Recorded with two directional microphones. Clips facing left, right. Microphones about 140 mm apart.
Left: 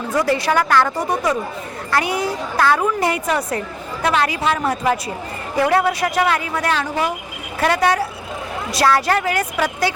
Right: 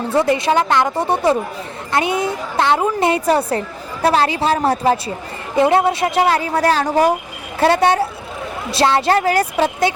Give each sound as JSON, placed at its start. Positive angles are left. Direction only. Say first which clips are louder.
{"t": 0.1, "sound": "a woman's voice", "louder": "right 2 dB", "side_deg": -25}
{"t": 7.6, "sound": "a woman's voice", "louder": "right 3 dB", "side_deg": -30}